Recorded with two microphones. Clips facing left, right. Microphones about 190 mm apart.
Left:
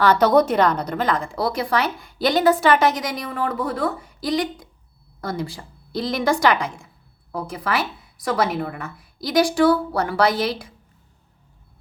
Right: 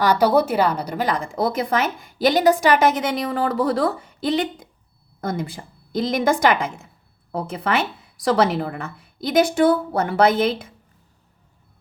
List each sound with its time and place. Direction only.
0.0 s a woman's voice: 10° right (ahead or behind)
7.3 s a woman's voice: 25° right (ahead or behind)